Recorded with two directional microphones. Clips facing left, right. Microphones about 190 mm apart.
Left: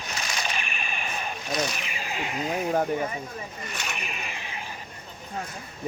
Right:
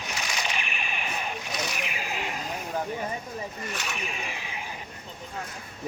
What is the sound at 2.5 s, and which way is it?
Snake, 60° left (ahead or behind).